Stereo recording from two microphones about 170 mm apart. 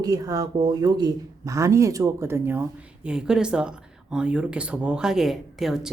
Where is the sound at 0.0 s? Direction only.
20° right (ahead or behind).